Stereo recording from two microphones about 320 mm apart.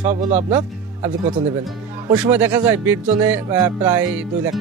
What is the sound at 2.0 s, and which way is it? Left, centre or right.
Speech, centre.